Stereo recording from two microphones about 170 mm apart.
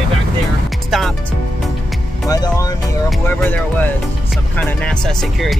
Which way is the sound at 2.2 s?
20° left (ahead or behind).